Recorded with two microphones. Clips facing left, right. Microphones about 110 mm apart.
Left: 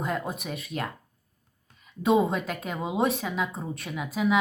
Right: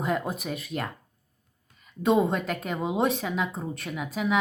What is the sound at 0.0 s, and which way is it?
Speech, centre (ahead or behind).